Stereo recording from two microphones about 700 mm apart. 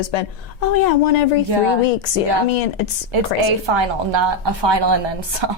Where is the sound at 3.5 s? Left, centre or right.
Right.